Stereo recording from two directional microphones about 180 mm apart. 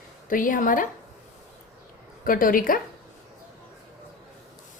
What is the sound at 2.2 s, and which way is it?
Speech, 50° left (ahead or behind).